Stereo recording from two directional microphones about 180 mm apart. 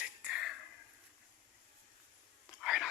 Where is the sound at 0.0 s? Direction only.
5° right (ahead or behind).